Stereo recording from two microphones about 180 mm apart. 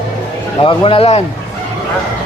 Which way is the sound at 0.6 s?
30° left (ahead or behind).